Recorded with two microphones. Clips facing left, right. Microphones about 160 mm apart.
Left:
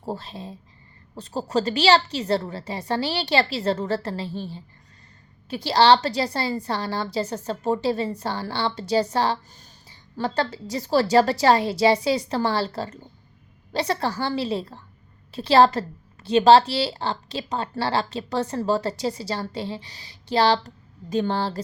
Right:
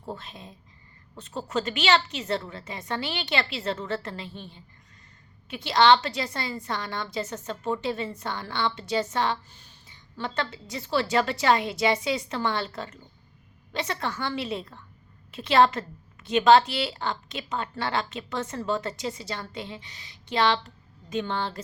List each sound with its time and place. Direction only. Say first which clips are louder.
0.0 s a woman's voice: left 6 dB; 35° left (ahead or behind)